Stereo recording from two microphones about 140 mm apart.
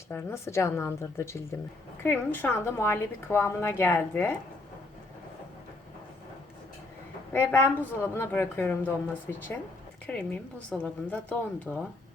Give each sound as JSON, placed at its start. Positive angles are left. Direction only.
{"t": 0.1, "sound": "a woman's voice", "side_deg": 15}
{"t": 7.3, "sound": "a woman's voice", "side_deg": 15}